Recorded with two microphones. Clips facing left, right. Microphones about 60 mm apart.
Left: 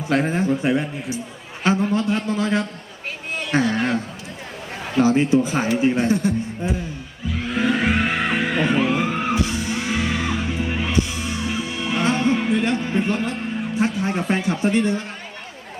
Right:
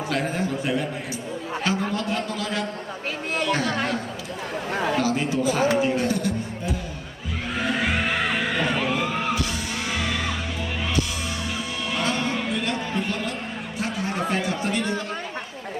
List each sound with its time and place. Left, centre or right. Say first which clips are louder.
0.1 s a man's voice: left 7 dB; left
4.9 s a man's voice: left 7 dB; left
7.6 s music: left 5 dB; centre
13.7 s a man's voice: left 5 dB; left